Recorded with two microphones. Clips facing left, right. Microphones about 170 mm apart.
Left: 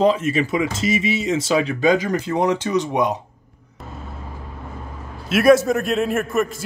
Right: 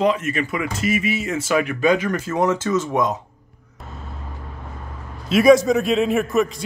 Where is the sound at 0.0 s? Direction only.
30° left (ahead or behind).